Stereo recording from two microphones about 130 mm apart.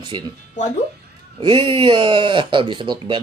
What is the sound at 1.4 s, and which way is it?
Speech, 40° right (ahead or behind).